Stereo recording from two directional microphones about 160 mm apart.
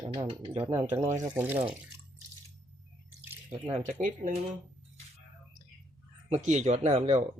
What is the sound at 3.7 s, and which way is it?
Speech, 55° right (ahead or behind).